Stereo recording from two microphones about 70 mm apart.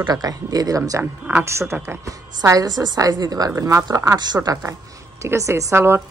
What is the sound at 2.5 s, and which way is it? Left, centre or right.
Speech, right.